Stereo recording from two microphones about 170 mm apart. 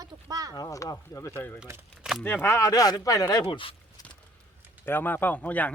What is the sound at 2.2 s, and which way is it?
Speech, 15° left (ahead or behind).